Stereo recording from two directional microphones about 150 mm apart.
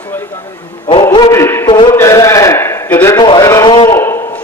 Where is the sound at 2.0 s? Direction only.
20° left (ahead or behind).